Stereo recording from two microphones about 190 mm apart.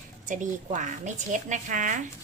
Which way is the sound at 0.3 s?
40° right (ahead or behind).